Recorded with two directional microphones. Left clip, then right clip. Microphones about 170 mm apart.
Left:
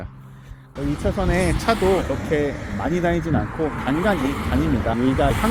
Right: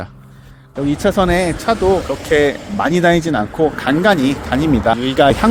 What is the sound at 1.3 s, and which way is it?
Speech, 20° right (ahead or behind).